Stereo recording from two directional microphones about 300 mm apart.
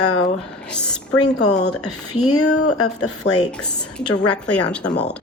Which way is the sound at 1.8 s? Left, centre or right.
Left.